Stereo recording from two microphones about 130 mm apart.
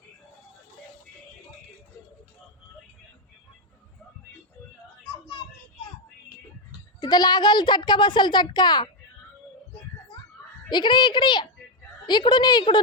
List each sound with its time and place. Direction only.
7.0 s a child's voice: 30° left (ahead or behind)
10.7 s a child's voice: 35° left (ahead or behind)